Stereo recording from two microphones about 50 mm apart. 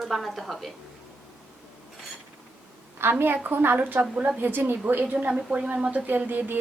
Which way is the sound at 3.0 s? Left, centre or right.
Right.